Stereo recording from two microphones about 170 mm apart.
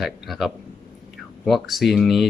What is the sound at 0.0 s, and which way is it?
Speech, centre (ahead or behind).